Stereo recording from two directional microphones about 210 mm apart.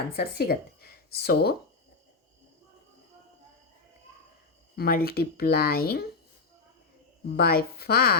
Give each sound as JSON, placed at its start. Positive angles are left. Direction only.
{"t": 0.1, "sound": "speech", "side_deg": 45}
{"t": 4.8, "sound": "speech", "side_deg": 45}
{"t": 7.3, "sound": "speech", "side_deg": 45}